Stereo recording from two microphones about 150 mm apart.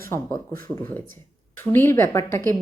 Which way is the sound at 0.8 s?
15° left (ahead or behind).